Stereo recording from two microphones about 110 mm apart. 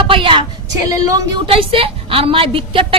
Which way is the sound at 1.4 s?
55° right (ahead or behind).